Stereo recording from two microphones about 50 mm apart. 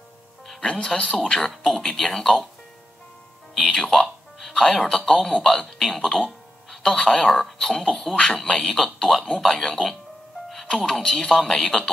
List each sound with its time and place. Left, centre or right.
0.6 s speech: left
0.8 s speech: centre
1.5 s speech: centre
3.5 s music: centre
4.6 s speech: centre